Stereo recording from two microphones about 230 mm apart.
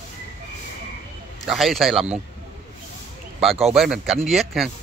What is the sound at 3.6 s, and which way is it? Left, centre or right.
Speech, centre.